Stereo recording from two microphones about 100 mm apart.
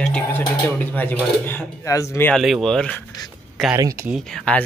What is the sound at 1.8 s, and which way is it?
Speech, 30° left (ahead or behind).